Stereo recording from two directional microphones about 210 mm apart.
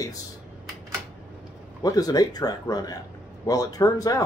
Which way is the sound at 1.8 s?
15° left (ahead or behind).